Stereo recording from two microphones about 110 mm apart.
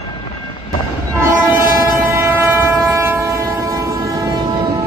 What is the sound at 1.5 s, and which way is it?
Train, 15° right (ahead or behind).